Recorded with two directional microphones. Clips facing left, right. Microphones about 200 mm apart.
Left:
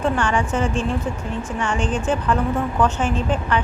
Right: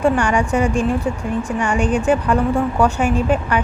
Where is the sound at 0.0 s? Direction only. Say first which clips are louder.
Right 4 dB; 15° right (ahead or behind).